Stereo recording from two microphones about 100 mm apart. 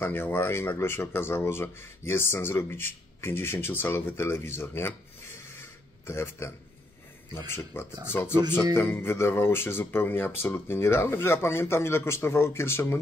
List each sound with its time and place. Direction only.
0.0 s speech: 20° left (ahead or behind)
7.7 s speech: 20° left (ahead or behind)